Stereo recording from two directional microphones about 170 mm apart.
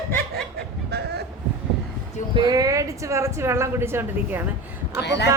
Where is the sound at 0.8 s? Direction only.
75° right (ahead or behind).